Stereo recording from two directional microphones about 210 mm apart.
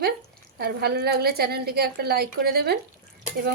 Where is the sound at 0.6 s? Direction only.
50° right (ahead or behind).